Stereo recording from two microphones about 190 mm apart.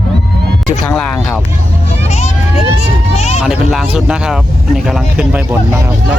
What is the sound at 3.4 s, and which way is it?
Vehicle, 5° right (ahead or behind).